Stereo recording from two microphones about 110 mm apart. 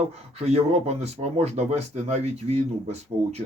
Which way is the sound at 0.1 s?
70° right (ahead or behind).